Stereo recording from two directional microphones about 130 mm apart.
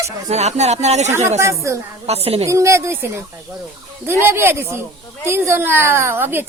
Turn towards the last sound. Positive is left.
turn(degrees=-15)  # may be behind; listen again after turning